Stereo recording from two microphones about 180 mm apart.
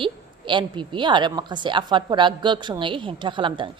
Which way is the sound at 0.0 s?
25° right (ahead or behind).